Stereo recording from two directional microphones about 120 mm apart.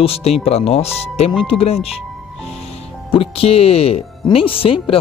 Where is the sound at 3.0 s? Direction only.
50° left (ahead or behind).